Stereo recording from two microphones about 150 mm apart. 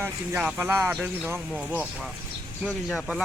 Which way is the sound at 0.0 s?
10° right (ahead or behind).